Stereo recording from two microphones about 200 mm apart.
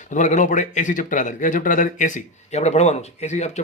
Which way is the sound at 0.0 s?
40° left (ahead or behind).